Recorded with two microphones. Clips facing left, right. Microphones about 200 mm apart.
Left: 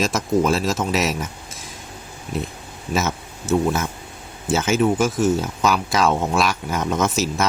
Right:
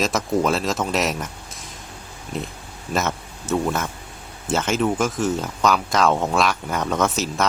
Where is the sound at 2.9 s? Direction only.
5° left (ahead or behind).